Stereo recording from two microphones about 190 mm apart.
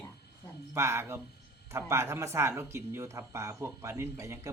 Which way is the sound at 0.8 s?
15° right (ahead or behind).